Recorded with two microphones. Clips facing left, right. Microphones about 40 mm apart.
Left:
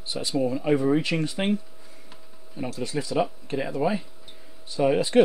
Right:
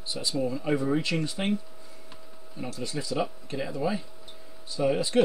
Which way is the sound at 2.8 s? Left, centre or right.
Left.